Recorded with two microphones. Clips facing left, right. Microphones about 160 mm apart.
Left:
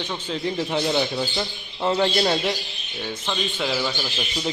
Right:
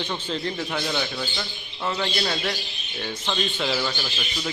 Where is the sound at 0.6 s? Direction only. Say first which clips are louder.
Left 5 dB; 25° left (ahead or behind).